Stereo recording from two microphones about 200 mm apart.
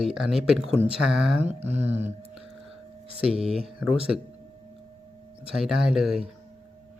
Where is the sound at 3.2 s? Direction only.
5° right (ahead or behind).